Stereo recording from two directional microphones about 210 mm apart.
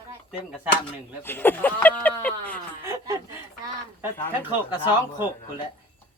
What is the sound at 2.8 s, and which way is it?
Speech, 15° right (ahead or behind).